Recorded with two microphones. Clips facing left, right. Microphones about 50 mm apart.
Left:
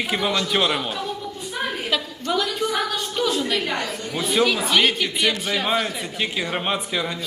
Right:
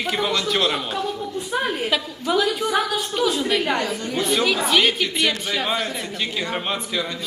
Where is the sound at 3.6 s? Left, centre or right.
Right.